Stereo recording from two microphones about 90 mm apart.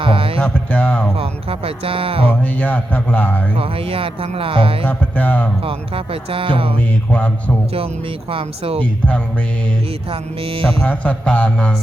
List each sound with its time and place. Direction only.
0.0 s music: 85° right
0.3 s a man's voice: 20° left (ahead or behind)
1.2 s speech: 90° right
2.4 s a man's voice: 20° left (ahead or behind)
3.6 s speech: 90° right
4.9 s a man's voice: 20° left (ahead or behind)
5.6 s speech: 90° right
7.1 s a sound: 15° left (ahead or behind)
8.3 s speech: 90° right
10.1 s speech: 90° right
10.8 s a sound: 15° left (ahead or behind)